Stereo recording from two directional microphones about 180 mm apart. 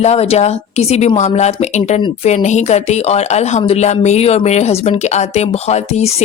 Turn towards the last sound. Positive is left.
turn(degrees=35)  # may be behind; listen again after turning